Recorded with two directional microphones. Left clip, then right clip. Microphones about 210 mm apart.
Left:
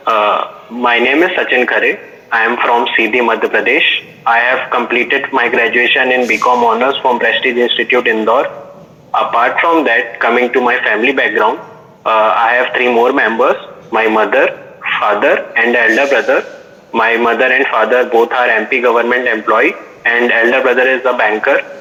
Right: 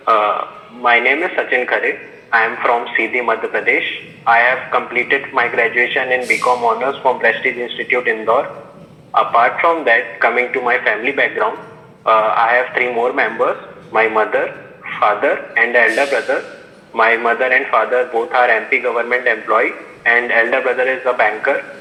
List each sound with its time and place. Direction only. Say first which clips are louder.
0.0 s a man's voice: left 3 dB; 60° left (ahead or behind)